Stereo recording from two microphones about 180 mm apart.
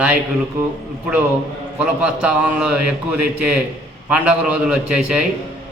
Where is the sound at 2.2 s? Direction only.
5° right (ahead or behind).